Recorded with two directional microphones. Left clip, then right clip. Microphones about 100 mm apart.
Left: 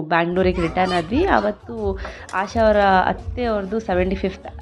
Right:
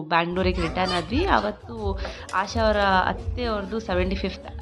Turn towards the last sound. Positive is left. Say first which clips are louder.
# left 5 dB
turn(degrees=20)  # may be behind; listen again after turning